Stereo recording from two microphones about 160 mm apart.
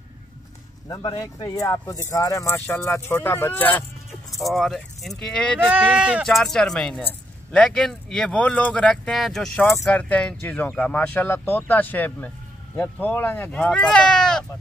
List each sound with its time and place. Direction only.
0.8 s speech: 25° left (ahead or behind)
4.4 s speech: centre (ahead or behind)
5.7 s speech: 5° right (ahead or behind)